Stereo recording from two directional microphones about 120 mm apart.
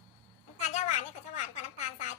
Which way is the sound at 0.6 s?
75° left (ahead or behind).